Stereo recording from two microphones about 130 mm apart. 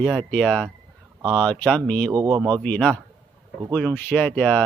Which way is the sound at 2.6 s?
5° left (ahead or behind).